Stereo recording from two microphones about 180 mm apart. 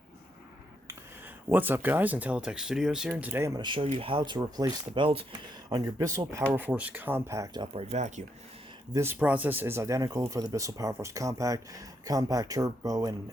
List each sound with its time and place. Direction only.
1.5 s speech: 10° right (ahead or behind)
4.6 s speech: 10° right (ahead or behind)
4.9 s speech: 30° right (ahead or behind)
8.9 s speech: 15° right (ahead or behind)